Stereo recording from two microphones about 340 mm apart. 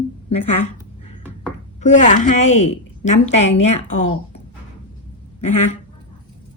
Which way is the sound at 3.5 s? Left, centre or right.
Left.